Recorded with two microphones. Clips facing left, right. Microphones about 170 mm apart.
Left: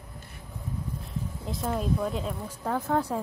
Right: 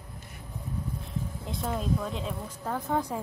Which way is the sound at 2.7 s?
10° right (ahead or behind).